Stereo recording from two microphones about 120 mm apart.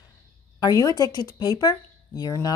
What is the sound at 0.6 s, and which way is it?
A woman's voice, 30° left (ahead or behind).